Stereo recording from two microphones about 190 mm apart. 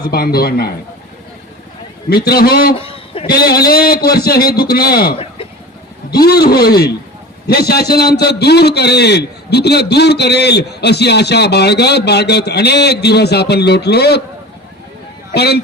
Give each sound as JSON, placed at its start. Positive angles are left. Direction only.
{"t": 0.1, "sound": "a man's voice", "side_deg": 55}
{"t": 2.0, "sound": "a man's voice", "side_deg": 55}
{"t": 2.7, "sound": "a sound", "side_deg": 30}
{"t": 3.2, "sound": "a man's voice", "side_deg": 55}
{"t": 5.1, "sound": "chicken", "side_deg": 30}
{"t": 6.1, "sound": "a man's voice", "side_deg": 55}
{"t": 15.3, "sound": "a man's voice", "side_deg": 60}